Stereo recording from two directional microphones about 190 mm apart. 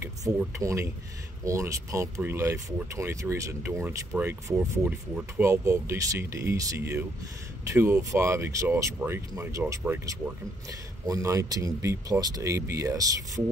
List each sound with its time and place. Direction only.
0.0 s speech: 15° right (ahead or behind)